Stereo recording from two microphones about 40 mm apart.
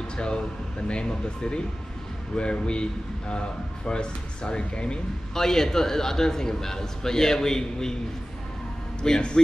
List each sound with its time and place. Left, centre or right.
0.8 s speech: left
5.3 s a man's voice: centre
9.0 s speech: centre